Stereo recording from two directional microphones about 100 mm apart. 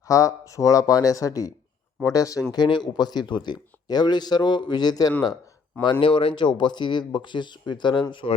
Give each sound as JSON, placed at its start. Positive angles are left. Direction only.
{"t": 0.1, "sound": "speech", "side_deg": 35}
{"t": 2.5, "sound": "speech", "side_deg": 50}
{"t": 5.8, "sound": "speech", "side_deg": 55}